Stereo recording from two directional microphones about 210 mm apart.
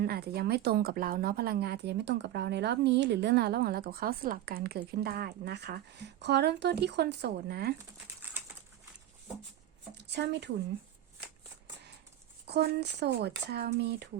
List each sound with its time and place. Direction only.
0.0 s speech: 50° right (ahead or behind)
10.1 s speech: 55° right (ahead or behind)
12.5 s speech: 50° right (ahead or behind)